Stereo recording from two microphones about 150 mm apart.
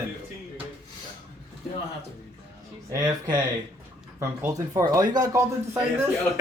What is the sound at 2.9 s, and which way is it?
Speech, 25° right (ahead or behind).